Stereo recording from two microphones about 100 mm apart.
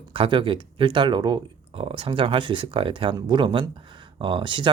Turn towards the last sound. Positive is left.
turn(degrees=-55)  # may be behind; listen again after turning